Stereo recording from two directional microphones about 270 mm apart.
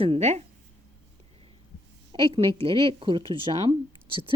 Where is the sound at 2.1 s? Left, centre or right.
Centre.